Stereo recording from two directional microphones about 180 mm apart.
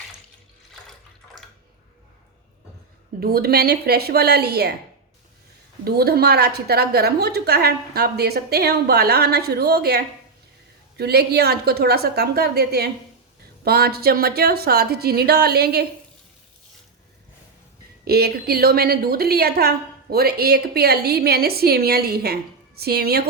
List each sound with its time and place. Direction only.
3.2 s a woman's voice: 55° right (ahead or behind)
5.8 s a woman's voice: 60° right (ahead or behind)
18.0 s a woman's voice: 60° right (ahead or behind)